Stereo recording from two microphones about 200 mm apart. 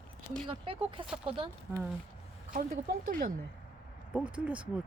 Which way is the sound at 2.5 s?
45° right (ahead or behind).